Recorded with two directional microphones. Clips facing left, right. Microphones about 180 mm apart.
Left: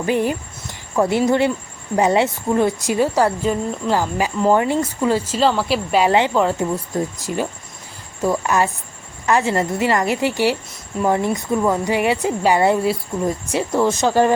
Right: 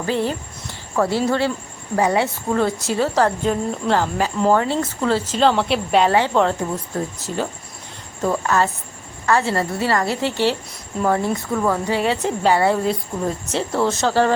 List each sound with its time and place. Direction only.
0.0 s a woman's voice: 15° left (ahead or behind)
6.1 s a woman's voice: 15° left (ahead or behind)